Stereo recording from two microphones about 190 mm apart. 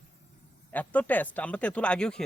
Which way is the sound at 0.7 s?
10° left (ahead or behind).